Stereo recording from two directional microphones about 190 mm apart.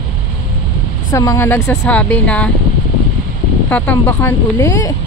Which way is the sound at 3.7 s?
10° left (ahead or behind).